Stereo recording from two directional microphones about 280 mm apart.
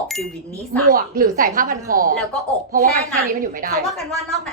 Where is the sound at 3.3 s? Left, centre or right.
Right.